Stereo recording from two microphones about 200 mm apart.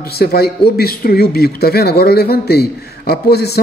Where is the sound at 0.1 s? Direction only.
50° left (ahead or behind).